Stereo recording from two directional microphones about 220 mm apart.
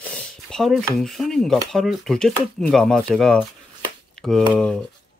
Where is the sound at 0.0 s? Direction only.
5° left (ahead or behind).